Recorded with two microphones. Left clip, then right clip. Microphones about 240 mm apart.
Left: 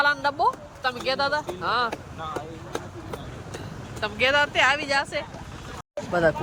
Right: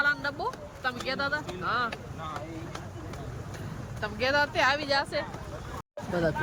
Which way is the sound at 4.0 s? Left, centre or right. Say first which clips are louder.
Left 5 dB; centre.